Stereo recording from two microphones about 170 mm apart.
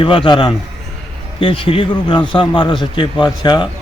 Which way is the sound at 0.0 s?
30° left (ahead or behind).